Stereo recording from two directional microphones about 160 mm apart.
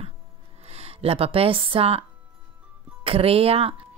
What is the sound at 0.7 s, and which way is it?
Speech, 40° right (ahead or behind).